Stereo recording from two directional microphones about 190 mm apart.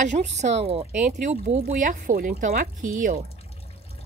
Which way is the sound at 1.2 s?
45° right (ahead or behind).